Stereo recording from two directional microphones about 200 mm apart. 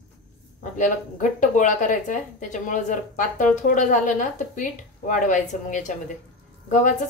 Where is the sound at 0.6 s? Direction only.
40° left (ahead or behind).